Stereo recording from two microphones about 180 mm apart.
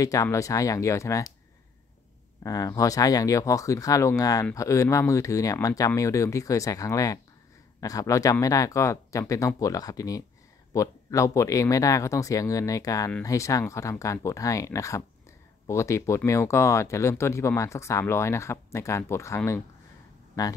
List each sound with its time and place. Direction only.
0.0 s speech: 20° left (ahead or behind)
2.4 s speech: 20° left (ahead or behind)